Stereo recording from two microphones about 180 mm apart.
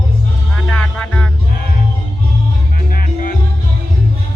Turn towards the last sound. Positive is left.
turn(degrees=50)  # may be behind; listen again after turning